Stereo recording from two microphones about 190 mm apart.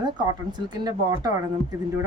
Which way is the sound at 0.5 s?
20° right (ahead or behind).